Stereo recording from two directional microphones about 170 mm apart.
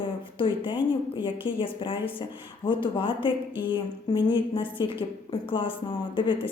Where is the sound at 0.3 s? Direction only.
30° left (ahead or behind).